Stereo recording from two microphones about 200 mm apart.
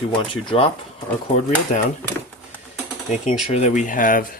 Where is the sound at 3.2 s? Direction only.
35° left (ahead or behind).